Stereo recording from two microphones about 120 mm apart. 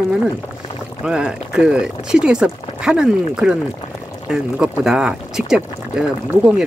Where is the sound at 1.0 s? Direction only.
5° right (ahead or behind).